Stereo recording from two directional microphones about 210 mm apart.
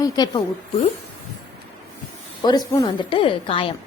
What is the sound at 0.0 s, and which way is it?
Speech, 20° left (ahead or behind).